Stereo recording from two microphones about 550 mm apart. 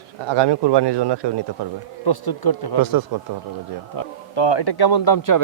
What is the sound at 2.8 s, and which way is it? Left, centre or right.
Speech, right.